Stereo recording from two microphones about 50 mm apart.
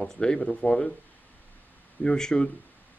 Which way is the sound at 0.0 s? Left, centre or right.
Centre.